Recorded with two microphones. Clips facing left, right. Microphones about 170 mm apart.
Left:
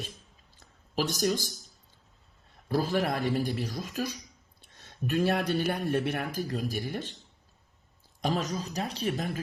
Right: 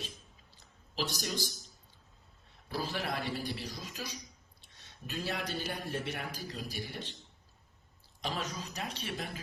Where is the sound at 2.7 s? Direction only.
50° left (ahead or behind).